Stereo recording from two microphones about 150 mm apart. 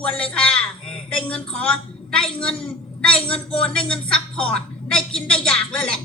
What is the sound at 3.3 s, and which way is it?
Speech, 40° left (ahead or behind).